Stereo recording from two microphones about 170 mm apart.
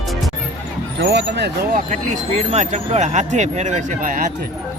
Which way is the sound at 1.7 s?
50° right (ahead or behind).